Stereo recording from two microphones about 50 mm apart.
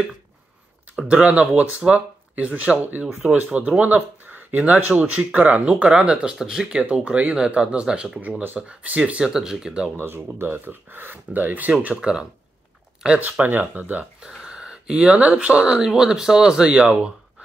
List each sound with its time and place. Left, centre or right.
1.0 s speech: right
6.8 s speech: right
7.3 s speech: centre
8.2 s speech: right
8.5 s speech: right
9.2 s speech: centre
9.9 s speech: right
11.8 s speech: right
13.2 s speech: right
14.4 s speech: centre
16.7 s speech: right